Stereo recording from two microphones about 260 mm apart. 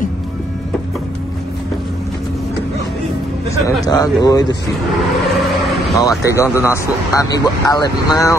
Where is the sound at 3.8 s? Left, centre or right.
Centre.